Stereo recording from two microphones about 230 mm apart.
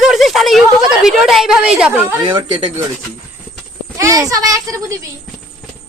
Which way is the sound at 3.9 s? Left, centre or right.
Centre.